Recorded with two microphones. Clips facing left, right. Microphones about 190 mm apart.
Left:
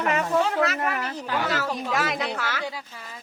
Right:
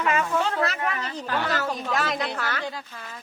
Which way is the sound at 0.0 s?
40° left (ahead or behind).